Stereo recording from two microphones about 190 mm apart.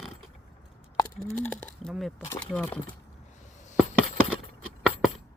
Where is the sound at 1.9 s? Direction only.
Centre (ahead or behind).